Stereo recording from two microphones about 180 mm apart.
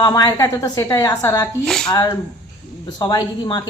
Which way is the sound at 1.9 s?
20° left (ahead or behind).